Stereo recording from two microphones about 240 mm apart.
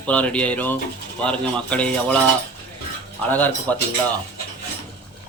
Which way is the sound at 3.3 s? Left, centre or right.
Centre.